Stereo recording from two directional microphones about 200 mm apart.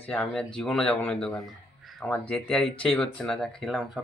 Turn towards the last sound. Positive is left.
turn(degrees=0)  # may be behind; listen again after turning